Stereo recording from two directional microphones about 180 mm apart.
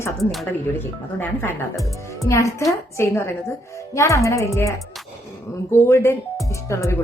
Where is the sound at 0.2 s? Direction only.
Centre (ahead or behind).